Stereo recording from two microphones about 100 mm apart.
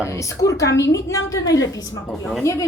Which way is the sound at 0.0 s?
30° left (ahead or behind).